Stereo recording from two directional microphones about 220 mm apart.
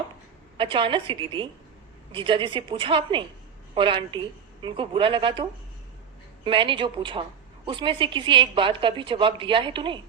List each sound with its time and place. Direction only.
0.5 s a woman's voice: 25° right (ahead or behind)